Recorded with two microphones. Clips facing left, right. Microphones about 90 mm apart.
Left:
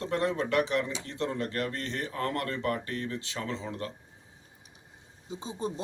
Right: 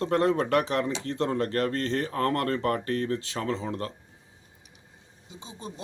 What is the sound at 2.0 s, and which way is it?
Speech, 45° right (ahead or behind).